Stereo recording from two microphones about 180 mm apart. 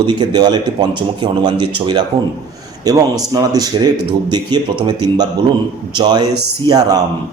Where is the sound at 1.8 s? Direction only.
25° right (ahead or behind).